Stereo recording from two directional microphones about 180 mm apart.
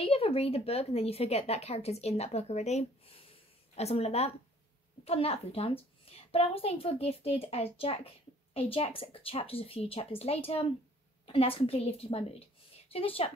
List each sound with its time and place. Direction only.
0.0 s a woman's voice: 30° left (ahead or behind)